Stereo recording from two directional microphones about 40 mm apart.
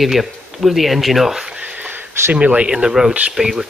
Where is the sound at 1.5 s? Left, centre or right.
Right.